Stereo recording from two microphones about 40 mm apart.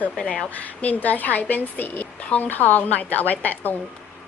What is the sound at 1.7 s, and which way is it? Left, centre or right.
Speech, left.